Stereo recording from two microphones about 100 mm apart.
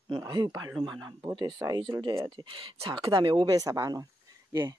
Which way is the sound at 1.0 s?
45° right (ahead or behind).